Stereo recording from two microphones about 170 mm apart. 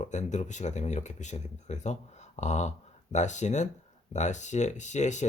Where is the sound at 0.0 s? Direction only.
45° left (ahead or behind).